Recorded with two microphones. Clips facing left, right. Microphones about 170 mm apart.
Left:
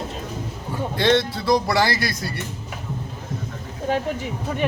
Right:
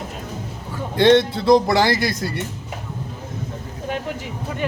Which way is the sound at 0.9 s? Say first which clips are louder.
Right 6 dB; 20° right (ahead or behind).